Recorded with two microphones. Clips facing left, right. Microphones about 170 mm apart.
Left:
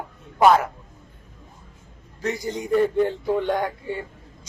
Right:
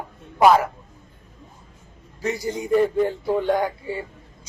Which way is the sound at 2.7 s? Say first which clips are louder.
Right 1 dB; 5° right (ahead or behind).